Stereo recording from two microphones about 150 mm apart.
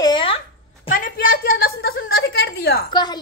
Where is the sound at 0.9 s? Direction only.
65° left (ahead or behind); by 2.8 s 90° left.